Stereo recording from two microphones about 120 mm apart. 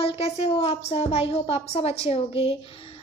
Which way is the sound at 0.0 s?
55° left (ahead or behind).